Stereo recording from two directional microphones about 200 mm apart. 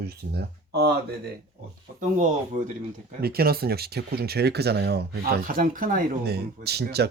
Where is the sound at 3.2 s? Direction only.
50° right (ahead or behind).